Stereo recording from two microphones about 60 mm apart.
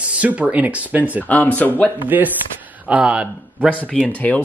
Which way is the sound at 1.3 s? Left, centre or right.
Left.